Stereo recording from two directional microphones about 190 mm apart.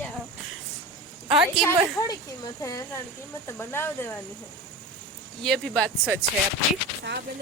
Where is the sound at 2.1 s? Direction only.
20° left (ahead or behind).